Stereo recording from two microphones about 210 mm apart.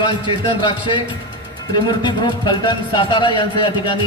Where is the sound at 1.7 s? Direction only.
20° left (ahead or behind).